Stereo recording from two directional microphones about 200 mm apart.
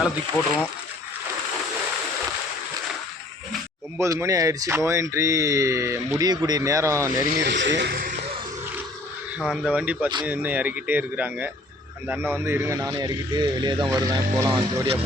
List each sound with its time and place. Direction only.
0.4 s speech: 15° left (ahead or behind)
3.9 s speech: 15° right (ahead or behind)
7.3 s speech: 55° right (ahead or behind)
9.5 s speech: 5° right (ahead or behind); by 14.9 s 20° right (ahead or behind)